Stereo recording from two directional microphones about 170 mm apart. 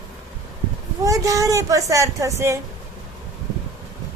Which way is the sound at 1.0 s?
20° right (ahead or behind).